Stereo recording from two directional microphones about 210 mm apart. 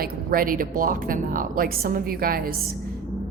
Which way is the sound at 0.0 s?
45° right (ahead or behind).